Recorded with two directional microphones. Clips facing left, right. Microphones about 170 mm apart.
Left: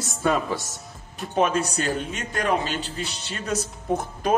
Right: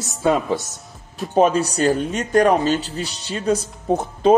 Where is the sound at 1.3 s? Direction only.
35° right (ahead or behind).